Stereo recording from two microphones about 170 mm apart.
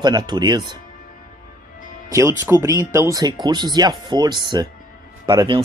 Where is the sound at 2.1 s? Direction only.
15° right (ahead or behind).